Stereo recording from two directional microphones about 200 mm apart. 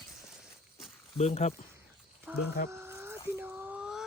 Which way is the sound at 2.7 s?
15° right (ahead or behind).